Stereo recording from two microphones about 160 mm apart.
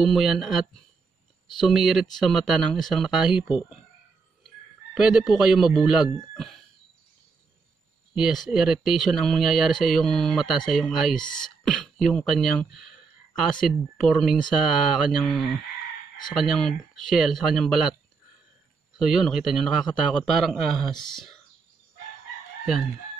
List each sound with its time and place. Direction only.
0.0 s speech: centre (ahead or behind)
4.9 s speech: 5° right (ahead or behind)
8.1 s speech: centre (ahead or behind)
11.1 s speech: 30° left (ahead or behind)
11.4 s speech: 5° left (ahead or behind)
18.9 s speech: centre (ahead or behind)